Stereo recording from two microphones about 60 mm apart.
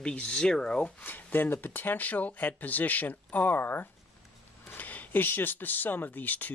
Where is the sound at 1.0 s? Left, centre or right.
Left.